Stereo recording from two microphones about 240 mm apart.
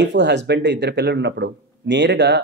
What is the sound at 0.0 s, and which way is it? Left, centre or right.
Speech, right.